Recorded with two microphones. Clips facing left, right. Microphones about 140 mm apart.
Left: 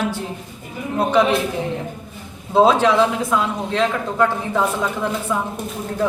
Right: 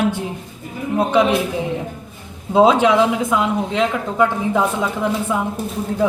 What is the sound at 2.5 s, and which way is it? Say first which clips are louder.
A man's voice: right 1 dB; 15° right (ahead or behind).